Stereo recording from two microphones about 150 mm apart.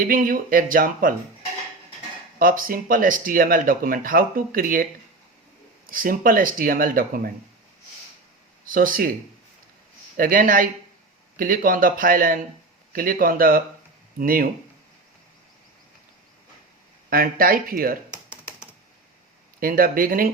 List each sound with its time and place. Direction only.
0.1 s speech: 70° right (ahead or behind)
2.4 s speech: 70° right (ahead or behind)
8.6 s speech: 65° right (ahead or behind)
10.2 s speech: 65° right (ahead or behind)
17.1 s speech: 75° right (ahead or behind)
19.5 s speech: 70° right (ahead or behind)